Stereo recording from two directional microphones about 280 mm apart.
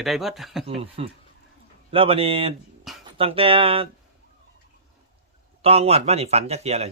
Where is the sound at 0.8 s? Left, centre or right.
Right.